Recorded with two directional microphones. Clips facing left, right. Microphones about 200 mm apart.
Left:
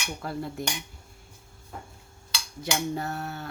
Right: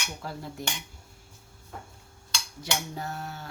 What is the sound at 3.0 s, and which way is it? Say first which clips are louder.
Cutlery: left 3 dB; 60° left (ahead or behind).